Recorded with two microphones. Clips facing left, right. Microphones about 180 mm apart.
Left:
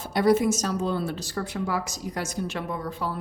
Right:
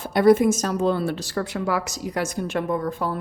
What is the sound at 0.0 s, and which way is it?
A woman's voice, 55° right (ahead or behind).